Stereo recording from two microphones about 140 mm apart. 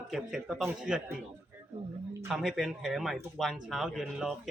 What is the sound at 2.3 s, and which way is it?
Speech, centre (ahead or behind).